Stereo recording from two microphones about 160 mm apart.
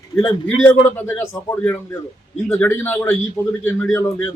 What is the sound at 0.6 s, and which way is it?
A man's voice, 15° left (ahead or behind).